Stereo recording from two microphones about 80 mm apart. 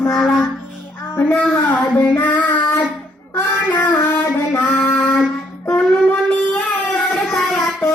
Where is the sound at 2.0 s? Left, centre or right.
Left.